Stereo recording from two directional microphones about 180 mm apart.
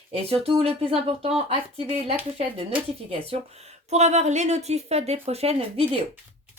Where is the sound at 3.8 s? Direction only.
40° right (ahead or behind).